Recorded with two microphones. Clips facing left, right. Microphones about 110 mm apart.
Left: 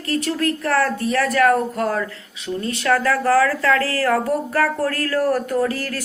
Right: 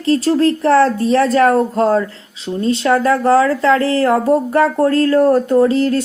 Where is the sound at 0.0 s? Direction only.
30° right (ahead or behind).